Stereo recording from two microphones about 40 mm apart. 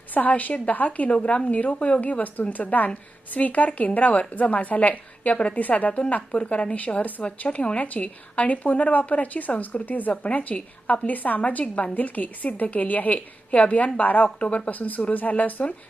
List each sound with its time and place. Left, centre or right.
0.1 s a woman's voice: left
5.5 s a woman's voice: left
6.3 s a woman's voice: left